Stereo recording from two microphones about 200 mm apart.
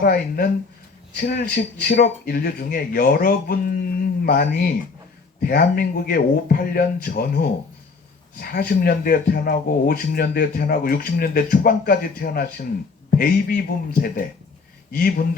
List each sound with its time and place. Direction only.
0.0 s speech: 45° left (ahead or behind)